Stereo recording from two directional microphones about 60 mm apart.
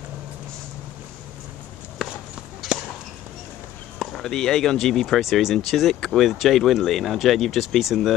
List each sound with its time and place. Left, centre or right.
2.0 s horse: centre
2.7 s a sound: right
4.0 s speech: centre
5.9 s speech: centre
6.2 s speech: centre